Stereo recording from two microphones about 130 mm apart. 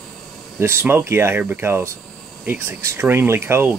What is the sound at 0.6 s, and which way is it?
Speech, 20° right (ahead or behind).